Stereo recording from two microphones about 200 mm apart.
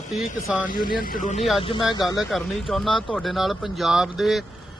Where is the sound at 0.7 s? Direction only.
45° left (ahead or behind).